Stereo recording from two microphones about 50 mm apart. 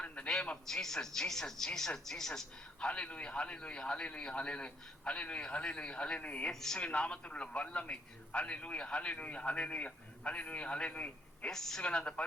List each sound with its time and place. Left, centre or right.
0.5 s speech: centre
2.8 s a man's voice: left
6.5 s speech: centre
6.7 s a man's voice: left
11.5 s speech: centre
11.8 s a man's voice: left